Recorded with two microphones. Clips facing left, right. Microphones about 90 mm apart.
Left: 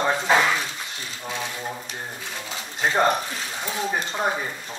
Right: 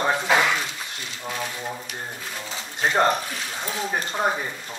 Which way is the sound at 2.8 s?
Centre (ahead or behind).